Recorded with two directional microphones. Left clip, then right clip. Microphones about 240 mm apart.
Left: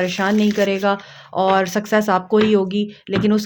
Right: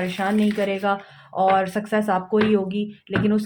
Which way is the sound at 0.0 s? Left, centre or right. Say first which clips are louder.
Left 4 dB; left.